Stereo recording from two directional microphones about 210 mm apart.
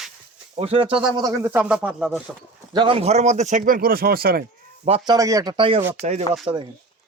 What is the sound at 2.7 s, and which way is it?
Speech, 25° right (ahead or behind).